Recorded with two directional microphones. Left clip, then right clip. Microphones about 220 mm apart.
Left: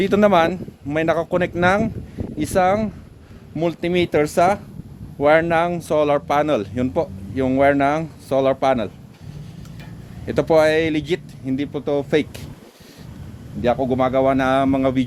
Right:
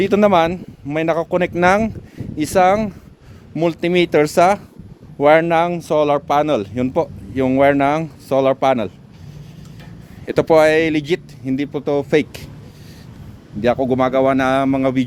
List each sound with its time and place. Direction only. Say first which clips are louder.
0.0 s speech: right 2 dB; 25° right (ahead or behind)
10.2 s speech: right 3 dB; 40° right (ahead or behind)
13.6 s speech: right 2 dB; 55° right (ahead or behind); by 15.0 s 30° right (ahead or behind)